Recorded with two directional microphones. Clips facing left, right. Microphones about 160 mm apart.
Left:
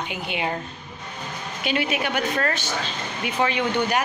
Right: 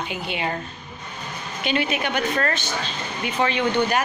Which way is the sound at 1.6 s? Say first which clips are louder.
Right 1 dB; 5° left (ahead or behind).